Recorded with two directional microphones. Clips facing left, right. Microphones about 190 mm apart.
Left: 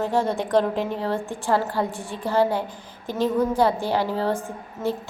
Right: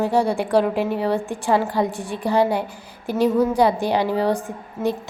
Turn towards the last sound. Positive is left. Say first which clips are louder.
# right 3 dB
turn(degrees=-15)  # may be behind; listen again after turning